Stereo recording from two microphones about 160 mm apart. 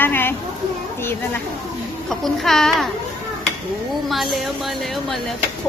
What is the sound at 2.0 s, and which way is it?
Speech, centre (ahead or behind).